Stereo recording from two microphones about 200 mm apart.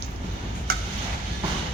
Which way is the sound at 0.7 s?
50° right (ahead or behind).